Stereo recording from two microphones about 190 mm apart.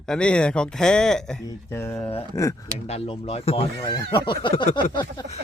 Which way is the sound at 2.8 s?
30° left (ahead or behind).